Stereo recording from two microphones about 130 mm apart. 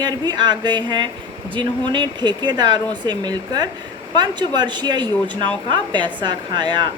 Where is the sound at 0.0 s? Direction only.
35° right (ahead or behind).